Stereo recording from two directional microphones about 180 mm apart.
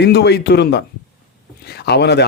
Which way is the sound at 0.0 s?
65° left (ahead or behind).